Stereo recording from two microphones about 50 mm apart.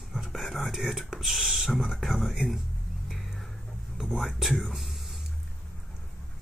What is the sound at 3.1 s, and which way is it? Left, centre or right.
Whispering, centre.